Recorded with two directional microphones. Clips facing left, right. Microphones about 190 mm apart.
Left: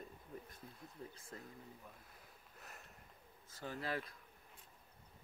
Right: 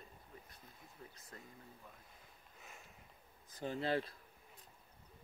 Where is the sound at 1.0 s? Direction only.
30° left (ahead or behind).